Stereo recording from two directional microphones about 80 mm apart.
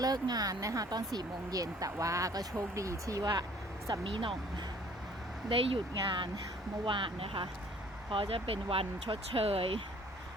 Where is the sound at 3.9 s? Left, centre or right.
Right.